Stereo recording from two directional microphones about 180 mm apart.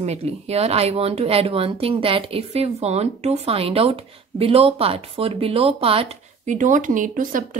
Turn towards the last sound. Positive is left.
turn(degrees=-45)  # may be behind; listen again after turning